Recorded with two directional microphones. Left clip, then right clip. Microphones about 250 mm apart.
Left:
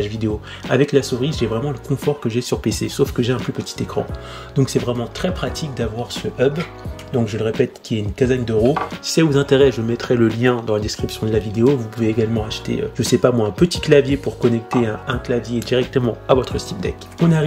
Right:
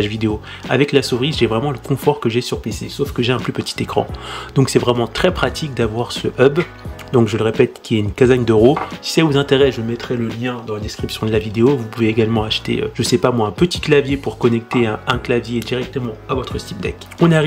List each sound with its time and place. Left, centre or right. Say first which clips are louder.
0.0 s speech: right 3 dB; centre
9.1 s speech: right 1 dB; centre
15.9 s speech: left 6 dB; centre